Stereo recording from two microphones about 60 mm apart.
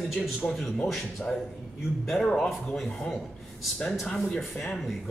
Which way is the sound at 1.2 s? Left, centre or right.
Left.